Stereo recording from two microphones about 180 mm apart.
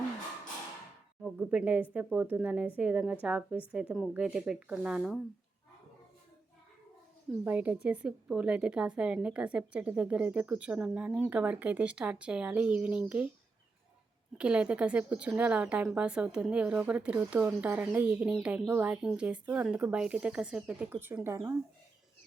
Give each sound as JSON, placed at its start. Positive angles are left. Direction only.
{"t": 1.2, "sound": "a woman's voice", "side_deg": -10}
{"t": 7.4, "sound": "a woman's voice", "side_deg": -10}
{"t": 14.3, "sound": "a woman's voice", "side_deg": -5}